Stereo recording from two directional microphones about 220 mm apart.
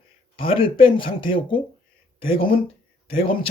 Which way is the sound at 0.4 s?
25° left (ahead or behind).